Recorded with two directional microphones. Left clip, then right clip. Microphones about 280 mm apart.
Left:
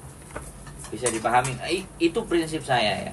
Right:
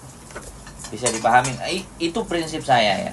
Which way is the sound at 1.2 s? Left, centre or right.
Centre.